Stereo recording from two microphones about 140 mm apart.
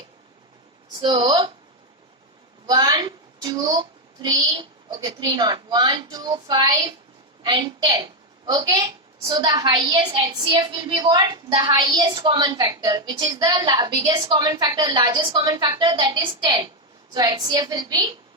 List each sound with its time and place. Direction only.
1.0 s a woman's voice: 35° right (ahead or behind)
2.6 s a sound: 30° right (ahead or behind)
4.2 s a woman's voice: 30° right (ahead or behind)